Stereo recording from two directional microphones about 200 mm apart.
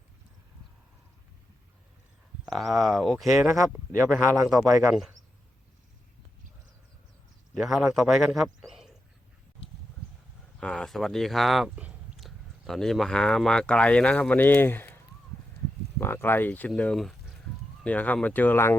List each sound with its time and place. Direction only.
2.5 s a man's voice: centre (ahead or behind)
3.3 s speech: 15° right (ahead or behind)
4.9 s a man's voice: centre (ahead or behind)
7.5 s a man's voice: centre (ahead or behind)
8.7 s a sound: centre (ahead or behind)
10.6 s speech: 5° left (ahead or behind)